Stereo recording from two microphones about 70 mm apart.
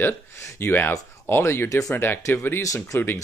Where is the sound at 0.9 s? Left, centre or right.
Left.